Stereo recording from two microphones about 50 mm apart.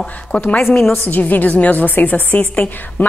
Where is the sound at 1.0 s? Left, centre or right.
Left.